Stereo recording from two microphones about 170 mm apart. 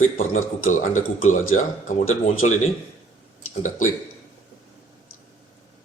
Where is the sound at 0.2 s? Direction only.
45° left (ahead or behind).